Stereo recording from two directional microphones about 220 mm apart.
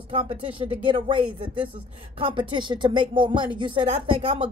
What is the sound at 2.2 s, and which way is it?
Speech, 25° right (ahead or behind).